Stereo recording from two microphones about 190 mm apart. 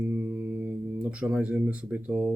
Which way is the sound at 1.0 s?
5° right (ahead or behind).